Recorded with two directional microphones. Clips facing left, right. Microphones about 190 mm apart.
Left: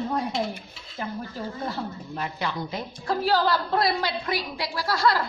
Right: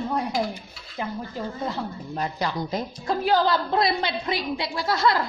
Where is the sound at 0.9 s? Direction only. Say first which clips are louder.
Right 2 dB; 15° right (ahead or behind).